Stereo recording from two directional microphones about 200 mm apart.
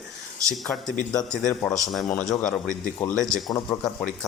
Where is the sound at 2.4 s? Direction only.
40° left (ahead or behind).